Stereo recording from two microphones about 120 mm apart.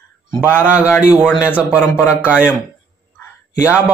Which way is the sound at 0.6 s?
15° right (ahead or behind).